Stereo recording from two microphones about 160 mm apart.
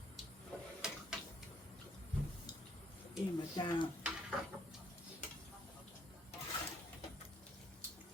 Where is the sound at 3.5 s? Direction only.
30° left (ahead or behind).